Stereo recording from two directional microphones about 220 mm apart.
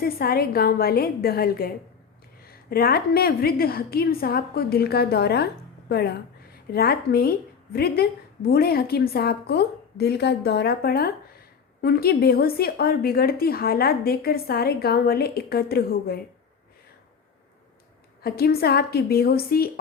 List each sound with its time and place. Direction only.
0.0 s a woman's voice: 45° left (ahead or behind)
18.2 s a woman's voice: 45° left (ahead or behind)